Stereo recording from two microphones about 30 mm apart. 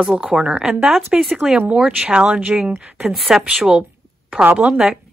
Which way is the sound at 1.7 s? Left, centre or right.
Right.